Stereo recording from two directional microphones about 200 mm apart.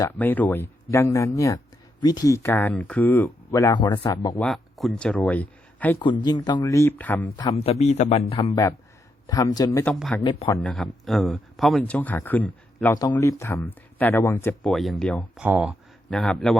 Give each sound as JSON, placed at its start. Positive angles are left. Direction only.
{"t": 0.0, "sound": "speech", "side_deg": 10}
{"t": 4.4, "sound": "speech", "side_deg": 0}
{"t": 6.2, "sound": "speech", "side_deg": 20}
{"t": 7.5, "sound": "a man's voice", "side_deg": 30}
{"t": 9.2, "sound": "speech", "side_deg": 15}
{"t": 9.9, "sound": "speech", "side_deg": 0}
{"t": 14.7, "sound": "speech", "side_deg": 0}
{"t": 15.4, "sound": "speech", "side_deg": -5}